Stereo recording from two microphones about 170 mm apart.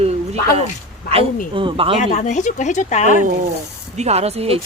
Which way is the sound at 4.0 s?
40° right (ahead or behind).